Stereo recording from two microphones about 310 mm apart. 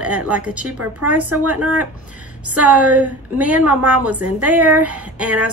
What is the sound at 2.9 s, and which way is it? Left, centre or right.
Speech, centre.